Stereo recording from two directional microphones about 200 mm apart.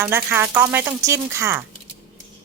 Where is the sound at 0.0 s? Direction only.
10° right (ahead or behind).